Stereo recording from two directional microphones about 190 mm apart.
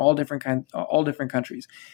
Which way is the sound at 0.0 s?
35° left (ahead or behind).